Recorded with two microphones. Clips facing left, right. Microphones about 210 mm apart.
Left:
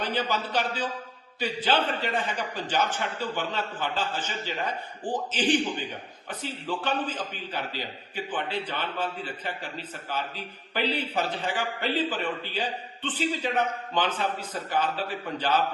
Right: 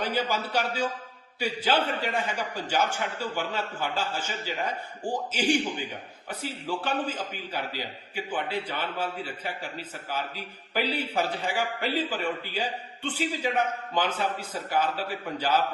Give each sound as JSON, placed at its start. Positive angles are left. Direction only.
{"t": 0.0, "sound": "a man's voice", "side_deg": -10}